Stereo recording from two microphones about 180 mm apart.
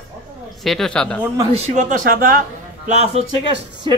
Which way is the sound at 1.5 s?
40° right (ahead or behind).